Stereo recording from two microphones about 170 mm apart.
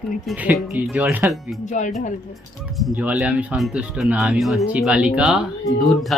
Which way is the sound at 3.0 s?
10° right (ahead or behind).